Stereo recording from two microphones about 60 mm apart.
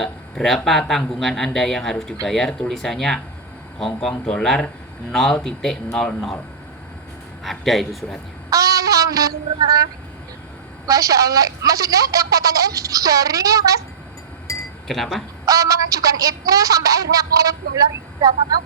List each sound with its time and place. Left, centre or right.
0.0 s speech: centre
7.4 s speech: centre
8.4 s speech: right
10.8 s speech: right
14.5 s chink: left
14.8 s speech: centre
15.4 s speech: right